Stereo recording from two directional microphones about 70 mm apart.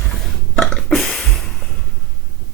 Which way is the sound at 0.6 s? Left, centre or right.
Centre.